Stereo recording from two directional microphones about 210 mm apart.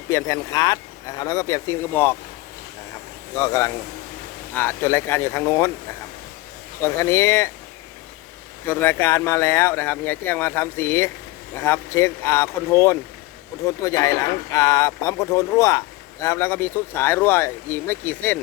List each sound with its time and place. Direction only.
0.1 s speech: 15° left (ahead or behind)
3.3 s speech: 15° left (ahead or behind)
6.8 s speech: 10° left (ahead or behind)
8.6 s speech: 10° left (ahead or behind)